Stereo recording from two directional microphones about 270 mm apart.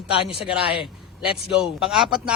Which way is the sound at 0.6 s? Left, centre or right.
Left.